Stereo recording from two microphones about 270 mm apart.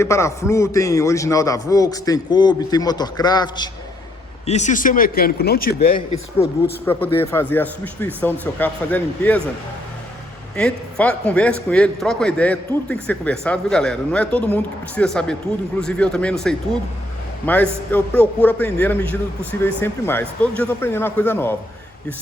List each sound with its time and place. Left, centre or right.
0.0 s a man's voice: centre
4.4 s a man's voice: left
7.2 s a man's voice: centre
10.6 s a man's voice: centre